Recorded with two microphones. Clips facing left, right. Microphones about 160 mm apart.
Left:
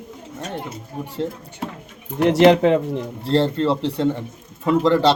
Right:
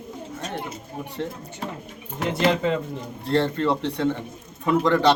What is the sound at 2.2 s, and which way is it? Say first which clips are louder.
Speech: left 9 dB; 75° left (ahead or behind).